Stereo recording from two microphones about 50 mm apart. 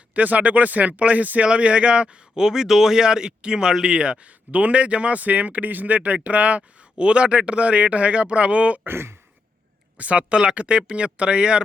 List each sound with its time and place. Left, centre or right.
0.1 s speech: right
8.9 s speech: right
10.0 s speech: right